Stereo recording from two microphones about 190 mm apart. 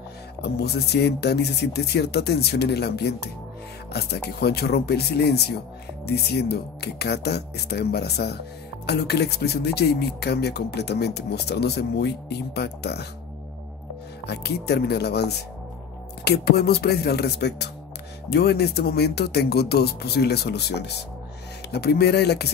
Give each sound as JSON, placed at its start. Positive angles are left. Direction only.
{"t": 0.4, "sound": "speech", "side_deg": 60}
{"t": 14.2, "sound": "speech", "side_deg": 60}